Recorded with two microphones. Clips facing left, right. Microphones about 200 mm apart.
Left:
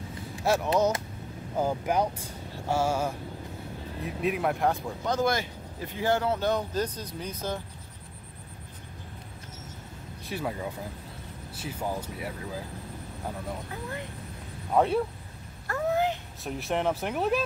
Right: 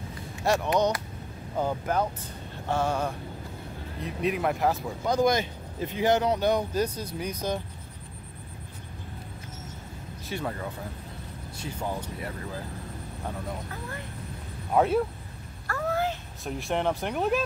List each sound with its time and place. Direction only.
0.4 s speech: centre (ahead or behind); by 7.6 s 15° right (ahead or behind)
10.2 s speech: 5° left (ahead or behind)
14.7 s speech: 5° right (ahead or behind)
15.6 s a sound: 20° left (ahead or behind)
16.4 s speech: centre (ahead or behind)